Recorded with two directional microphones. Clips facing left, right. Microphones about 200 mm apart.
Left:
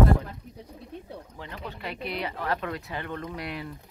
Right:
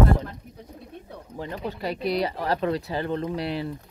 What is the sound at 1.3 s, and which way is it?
Speech, 40° right (ahead or behind).